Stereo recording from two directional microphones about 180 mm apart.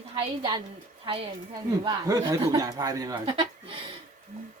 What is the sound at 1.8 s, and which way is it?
Speech, 20° right (ahead or behind).